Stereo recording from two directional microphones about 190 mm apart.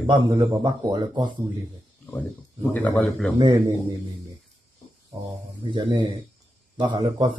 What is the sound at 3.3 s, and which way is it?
Speech, 20° right (ahead or behind).